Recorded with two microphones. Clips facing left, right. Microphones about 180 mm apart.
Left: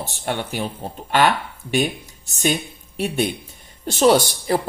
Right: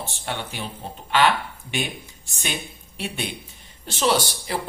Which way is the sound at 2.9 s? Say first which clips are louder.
Left 9 dB; 45° left (ahead or behind).